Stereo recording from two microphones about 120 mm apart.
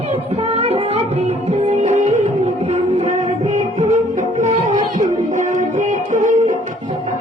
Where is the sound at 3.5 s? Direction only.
90° right.